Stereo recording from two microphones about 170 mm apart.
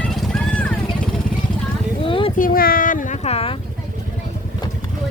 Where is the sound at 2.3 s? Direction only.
55° left (ahead or behind); by 3.5 s 35° left (ahead or behind).